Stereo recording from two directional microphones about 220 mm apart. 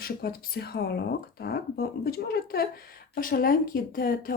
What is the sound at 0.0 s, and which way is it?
Speech, 45° left (ahead or behind).